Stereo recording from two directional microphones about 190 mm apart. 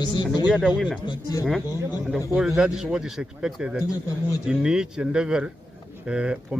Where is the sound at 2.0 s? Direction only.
5° right (ahead or behind).